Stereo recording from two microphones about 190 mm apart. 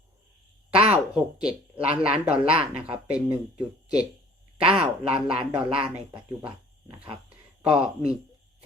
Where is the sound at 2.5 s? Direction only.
30° right (ahead or behind).